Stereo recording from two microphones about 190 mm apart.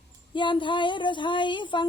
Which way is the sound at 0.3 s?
25° left (ahead or behind).